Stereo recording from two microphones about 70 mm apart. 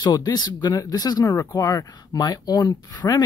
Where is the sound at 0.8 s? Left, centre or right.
Left.